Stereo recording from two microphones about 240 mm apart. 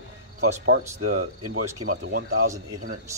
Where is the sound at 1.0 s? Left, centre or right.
Right.